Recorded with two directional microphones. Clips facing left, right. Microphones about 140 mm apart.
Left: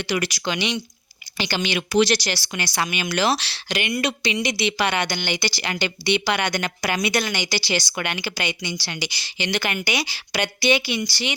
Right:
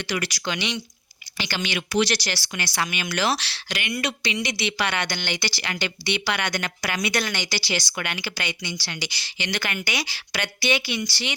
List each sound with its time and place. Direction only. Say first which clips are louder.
0.0 s speech: left 3 dB; 15° left (ahead or behind)
7.6 s speech: left 3 dB; 20° left (ahead or behind)